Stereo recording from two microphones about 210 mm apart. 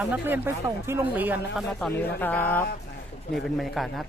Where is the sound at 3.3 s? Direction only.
Centre (ahead or behind).